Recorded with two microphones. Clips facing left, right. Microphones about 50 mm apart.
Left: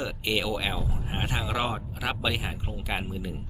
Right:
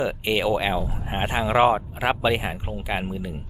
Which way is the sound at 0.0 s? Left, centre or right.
Right.